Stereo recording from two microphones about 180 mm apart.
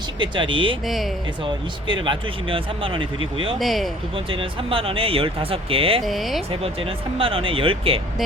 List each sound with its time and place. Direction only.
0.2 s speech: 25° right (ahead or behind)
0.9 s speech: centre (ahead or behind)
1.5 s speech: 25° right (ahead or behind)
3.6 s speech: centre (ahead or behind)
4.3 s speech: 30° right (ahead or behind)
6.0 s speech: centre (ahead or behind)
6.5 s speech: 30° right (ahead or behind)